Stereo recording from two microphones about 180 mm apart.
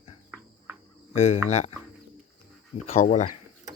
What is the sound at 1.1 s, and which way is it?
Speech, 40° left (ahead or behind).